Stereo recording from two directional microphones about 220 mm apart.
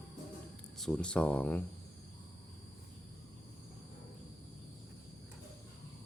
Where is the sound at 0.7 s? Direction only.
Centre (ahead or behind).